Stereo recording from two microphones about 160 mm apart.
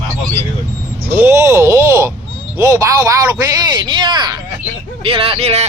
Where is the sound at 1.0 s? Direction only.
15° right (ahead or behind).